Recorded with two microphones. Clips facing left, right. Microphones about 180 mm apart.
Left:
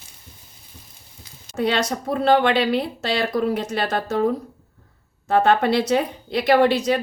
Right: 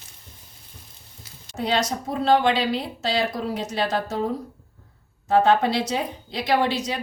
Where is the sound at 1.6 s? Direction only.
60° left (ahead or behind).